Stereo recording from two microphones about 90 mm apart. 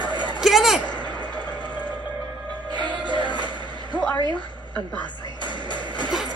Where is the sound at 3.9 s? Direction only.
10° left (ahead or behind).